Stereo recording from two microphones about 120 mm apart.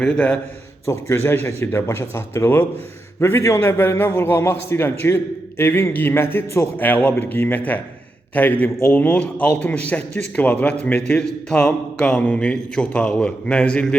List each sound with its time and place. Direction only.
0.0 s a man's voice: 10° left (ahead or behind)
0.9 s a man's voice: 20° left (ahead or behind)